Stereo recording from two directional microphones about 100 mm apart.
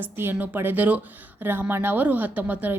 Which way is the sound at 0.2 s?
20° right (ahead or behind).